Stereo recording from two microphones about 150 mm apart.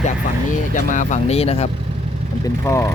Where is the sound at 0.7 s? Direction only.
55° left (ahead or behind).